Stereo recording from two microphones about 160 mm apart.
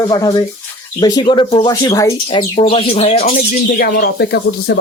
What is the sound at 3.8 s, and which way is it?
Speech, 80° left.